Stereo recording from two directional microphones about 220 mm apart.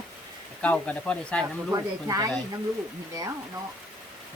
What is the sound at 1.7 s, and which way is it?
Speech, 15° right (ahead or behind).